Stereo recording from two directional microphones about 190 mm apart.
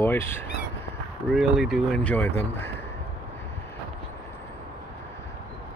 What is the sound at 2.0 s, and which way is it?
Speech, 10° left (ahead or behind).